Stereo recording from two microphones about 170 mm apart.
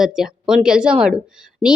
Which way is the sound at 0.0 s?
5° right (ahead or behind).